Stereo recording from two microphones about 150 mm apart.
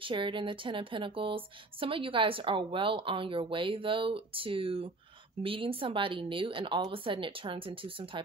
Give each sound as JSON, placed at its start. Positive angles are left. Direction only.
{"t": 0.0, "sound": "speech", "side_deg": -35}